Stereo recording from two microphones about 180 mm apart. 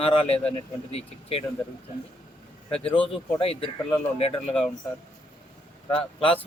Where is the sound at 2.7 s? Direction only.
30° left (ahead or behind).